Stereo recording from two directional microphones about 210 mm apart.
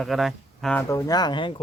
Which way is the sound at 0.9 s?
20° left (ahead or behind).